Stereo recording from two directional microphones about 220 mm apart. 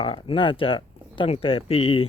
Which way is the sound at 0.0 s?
25° left (ahead or behind).